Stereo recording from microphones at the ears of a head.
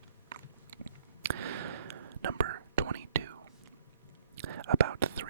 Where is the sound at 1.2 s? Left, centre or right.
Right.